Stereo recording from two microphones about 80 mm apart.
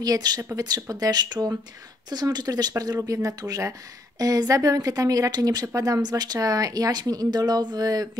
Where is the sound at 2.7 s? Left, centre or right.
Right.